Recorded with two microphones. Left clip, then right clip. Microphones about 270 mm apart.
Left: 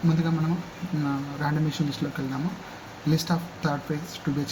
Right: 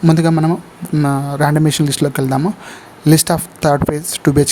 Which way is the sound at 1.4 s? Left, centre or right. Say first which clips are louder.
Right 15 dB; right.